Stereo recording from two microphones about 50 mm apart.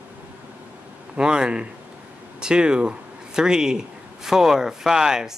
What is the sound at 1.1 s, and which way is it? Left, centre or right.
Speech, centre.